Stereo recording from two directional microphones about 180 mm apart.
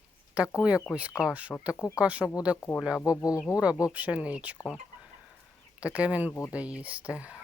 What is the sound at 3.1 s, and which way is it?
Speech, 20° left (ahead or behind).